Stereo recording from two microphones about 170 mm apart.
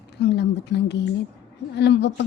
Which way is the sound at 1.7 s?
90° left.